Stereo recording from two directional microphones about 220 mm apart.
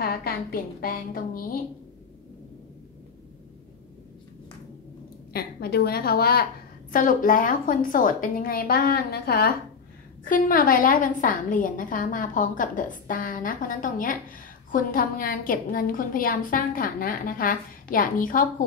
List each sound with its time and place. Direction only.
0.0 s a woman's voice: 40° left (ahead or behind)
5.3 s a woman's voice: 45° left (ahead or behind)